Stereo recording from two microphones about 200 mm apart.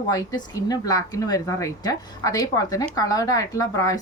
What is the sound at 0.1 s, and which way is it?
Speech, 20° left (ahead or behind).